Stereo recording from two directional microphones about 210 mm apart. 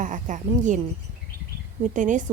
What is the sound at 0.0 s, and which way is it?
Speech, 35° right (ahead or behind).